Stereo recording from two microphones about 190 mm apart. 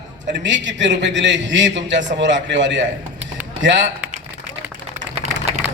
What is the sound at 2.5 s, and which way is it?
A man's voice, 70° right (ahead or behind).